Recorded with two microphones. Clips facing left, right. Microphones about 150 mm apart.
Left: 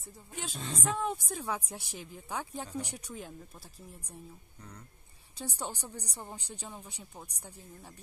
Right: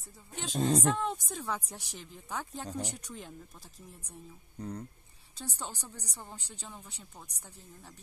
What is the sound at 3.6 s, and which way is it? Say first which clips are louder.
Speech: left 1 dB; 15° right (ahead or behind).